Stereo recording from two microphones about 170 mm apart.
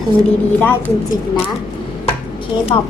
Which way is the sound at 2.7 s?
30° left (ahead or behind).